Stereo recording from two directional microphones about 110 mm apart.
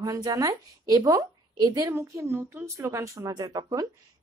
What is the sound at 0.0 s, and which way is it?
A woman's voice, 30° right (ahead or behind).